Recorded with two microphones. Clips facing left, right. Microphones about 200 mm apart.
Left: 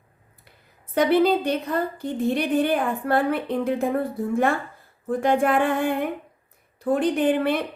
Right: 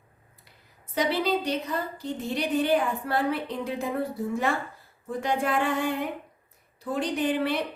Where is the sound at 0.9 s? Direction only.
55° left (ahead or behind).